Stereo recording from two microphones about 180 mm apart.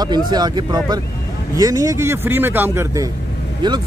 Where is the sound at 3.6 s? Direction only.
25° right (ahead or behind).